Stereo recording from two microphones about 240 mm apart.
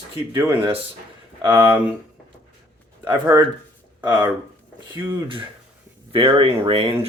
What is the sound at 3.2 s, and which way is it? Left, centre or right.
Speech, centre.